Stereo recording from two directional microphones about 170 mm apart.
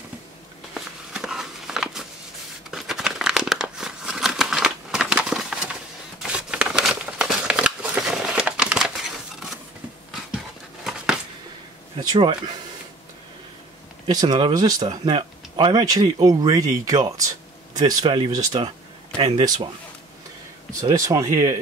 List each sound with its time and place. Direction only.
0.7 s a sound: 5° right (ahead or behind)
2.7 s crumpling: 5° right (ahead or behind)
6.1 s a sound: 5° right (ahead or behind)
12.0 s speech: 25° right (ahead or behind)
14.0 s speech: 25° right (ahead or behind)
19.1 s speech: 35° right (ahead or behind)
19.4 s speech: 20° right (ahead or behind)
20.9 s speech: 20° right (ahead or behind)